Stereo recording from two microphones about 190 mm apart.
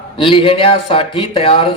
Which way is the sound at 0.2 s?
25° left (ahead or behind).